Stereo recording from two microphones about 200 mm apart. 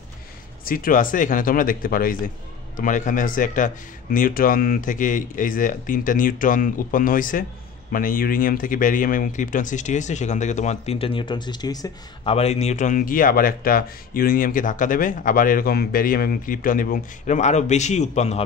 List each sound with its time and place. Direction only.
0.7 s speech: 45° left (ahead or behind); by 12.4 s 20° left (ahead or behind)
12.4 s speech: 30° left (ahead or behind)